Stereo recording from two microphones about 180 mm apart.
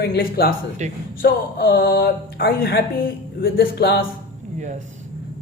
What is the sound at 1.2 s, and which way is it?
Speech, 60° left (ahead or behind).